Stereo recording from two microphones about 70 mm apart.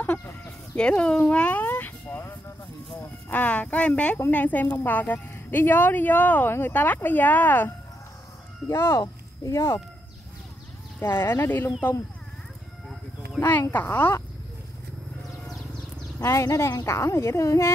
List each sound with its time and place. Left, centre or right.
0.7 s a sound: centre; by 2.3 s left
3.0 s a woman's voice: left
8.6 s speech: left
11.0 s a woman's voice: left
13.4 s a woman's voice: left
16.2 s a woman's voice: left